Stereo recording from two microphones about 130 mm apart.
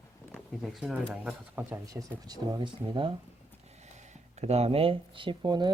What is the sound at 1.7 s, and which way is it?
Speech, 25° right (ahead or behind).